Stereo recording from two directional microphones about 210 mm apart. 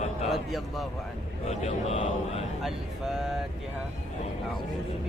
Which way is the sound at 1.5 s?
30° left (ahead or behind).